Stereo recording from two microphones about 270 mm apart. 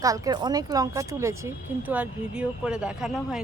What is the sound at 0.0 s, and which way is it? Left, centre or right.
Speech, centre.